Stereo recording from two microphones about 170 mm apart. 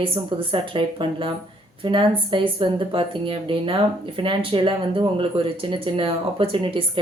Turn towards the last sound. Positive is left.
turn(degrees=-30)  # may be behind; listen again after turning